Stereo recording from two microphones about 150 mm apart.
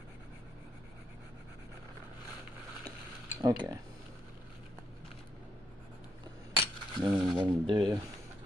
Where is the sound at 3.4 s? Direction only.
25° right (ahead or behind).